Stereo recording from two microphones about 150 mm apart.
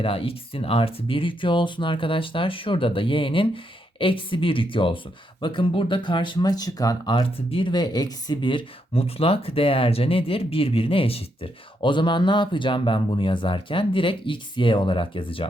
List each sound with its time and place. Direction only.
0.0 s speech: 40° left (ahead or behind)